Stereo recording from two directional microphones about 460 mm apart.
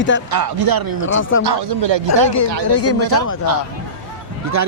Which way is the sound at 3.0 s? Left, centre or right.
Right.